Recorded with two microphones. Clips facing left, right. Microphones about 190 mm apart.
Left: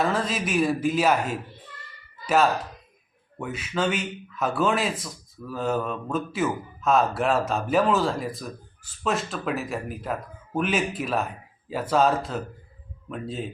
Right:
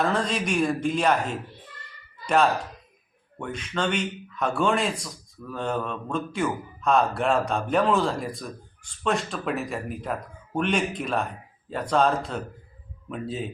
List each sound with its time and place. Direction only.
0.0 s speech: 5° left (ahead or behind)